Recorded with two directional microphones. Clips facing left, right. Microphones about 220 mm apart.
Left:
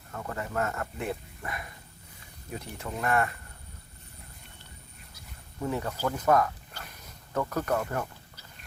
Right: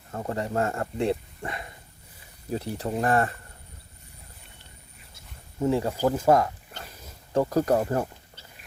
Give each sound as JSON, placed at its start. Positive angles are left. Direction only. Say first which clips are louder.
{"t": 0.1, "sound": "speech", "louder": "right 6 dB", "side_deg": -30}
{"t": 5.1, "sound": "a sound", "louder": "right 6 dB", "side_deg": -25}
{"t": 6.2, "sound": "speech", "louder": "right 1 dB", "side_deg": -30}